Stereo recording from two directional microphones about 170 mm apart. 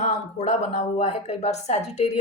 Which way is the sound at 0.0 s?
40° left (ahead or behind).